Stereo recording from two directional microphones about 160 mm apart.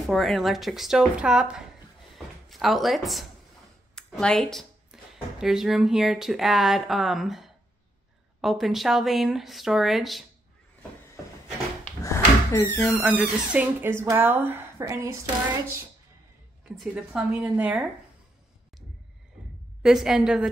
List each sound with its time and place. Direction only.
0.0 s speech: centre (ahead or behind)
12.0 s wheeze: 20° left (ahead or behind)
12.7 s speech: 10° left (ahead or behind)
13.0 s speech: 5° right (ahead or behind)
16.7 s speech: centre (ahead or behind)
19.8 s speech: centre (ahead or behind)